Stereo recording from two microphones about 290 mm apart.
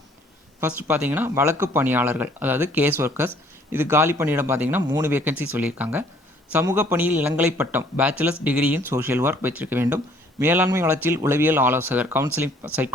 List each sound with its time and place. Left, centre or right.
0.6 s speech: centre